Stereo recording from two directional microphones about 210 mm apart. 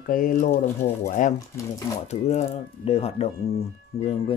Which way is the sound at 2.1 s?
30° left (ahead or behind).